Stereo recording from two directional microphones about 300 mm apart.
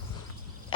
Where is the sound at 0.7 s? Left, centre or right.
Centre.